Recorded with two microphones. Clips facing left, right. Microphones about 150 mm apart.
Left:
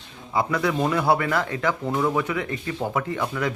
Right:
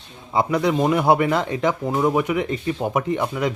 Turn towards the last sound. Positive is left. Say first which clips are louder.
# right 4 dB
turn(degrees=-20)  # may be behind; listen again after turning